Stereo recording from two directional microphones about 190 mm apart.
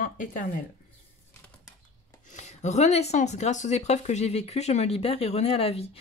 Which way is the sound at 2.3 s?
35° left (ahead or behind).